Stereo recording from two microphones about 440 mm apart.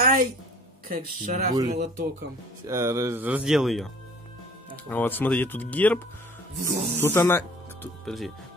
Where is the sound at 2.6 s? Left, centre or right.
Centre.